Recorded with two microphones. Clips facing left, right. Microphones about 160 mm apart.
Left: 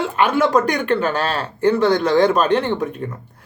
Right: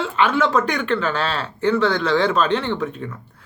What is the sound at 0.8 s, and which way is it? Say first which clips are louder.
Speech: left 3 dB; 45° left (ahead or behind).